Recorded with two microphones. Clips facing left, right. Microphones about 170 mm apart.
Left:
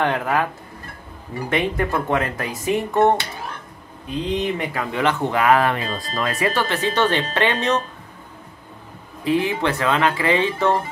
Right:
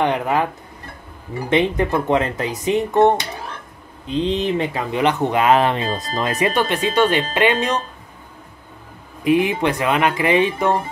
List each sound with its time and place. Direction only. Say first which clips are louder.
0.0 s speech: right 2 dB; 15° right (ahead or behind)
1.5 s speech: right 4 dB; 20° right (ahead or behind)
9.2 s speech: right 3 dB; 15° right (ahead or behind)